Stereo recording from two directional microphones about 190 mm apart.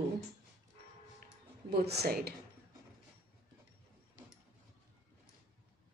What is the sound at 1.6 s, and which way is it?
Speech, 60° right (ahead or behind).